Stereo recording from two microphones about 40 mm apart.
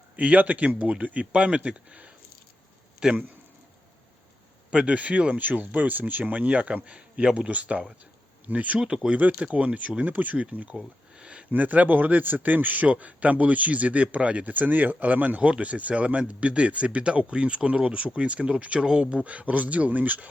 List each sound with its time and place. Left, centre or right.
0.2 s speech: right
3.0 s speech: centre
4.7 s a man's voice: right
10.1 s speech: right
11.2 s a sound: right
11.5 s speech: right
12.9 s speech: right
14.5 s speech: right